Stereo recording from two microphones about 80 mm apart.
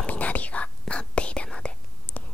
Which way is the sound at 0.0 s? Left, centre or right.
Centre.